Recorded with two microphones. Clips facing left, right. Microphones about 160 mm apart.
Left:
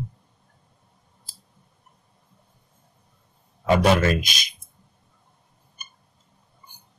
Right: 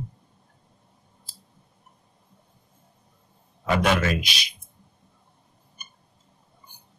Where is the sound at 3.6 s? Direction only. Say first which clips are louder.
Left 4 dB; 40° left (ahead or behind).